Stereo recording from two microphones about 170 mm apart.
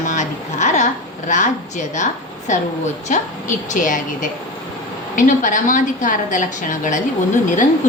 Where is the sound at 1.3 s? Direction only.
45° left (ahead or behind).